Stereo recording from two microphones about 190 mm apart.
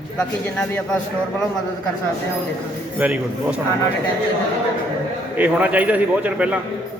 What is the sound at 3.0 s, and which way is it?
Speech, 10° right (ahead or behind).